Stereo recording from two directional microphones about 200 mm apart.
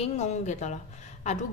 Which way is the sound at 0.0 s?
35° left (ahead or behind).